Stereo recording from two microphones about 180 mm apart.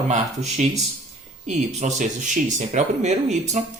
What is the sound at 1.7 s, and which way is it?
Speech, 40° right (ahead or behind).